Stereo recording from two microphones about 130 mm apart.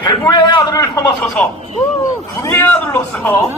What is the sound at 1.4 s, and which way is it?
Speech, 10° left (ahead or behind).